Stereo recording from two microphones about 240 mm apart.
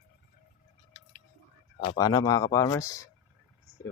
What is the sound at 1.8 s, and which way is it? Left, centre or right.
Speech, centre.